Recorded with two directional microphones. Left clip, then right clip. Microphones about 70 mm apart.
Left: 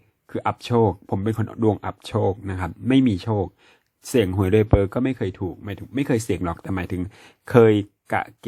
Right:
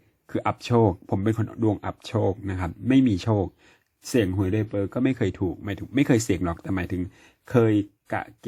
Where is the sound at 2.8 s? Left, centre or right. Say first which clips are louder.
Left 2 dB; left.